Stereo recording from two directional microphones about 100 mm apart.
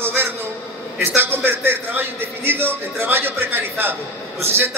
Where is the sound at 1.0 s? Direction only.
20° right (ahead or behind).